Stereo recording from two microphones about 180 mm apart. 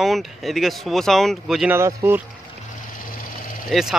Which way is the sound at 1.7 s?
15° right (ahead or behind).